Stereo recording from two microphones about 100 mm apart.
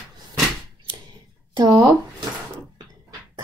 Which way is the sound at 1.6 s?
40° right (ahead or behind).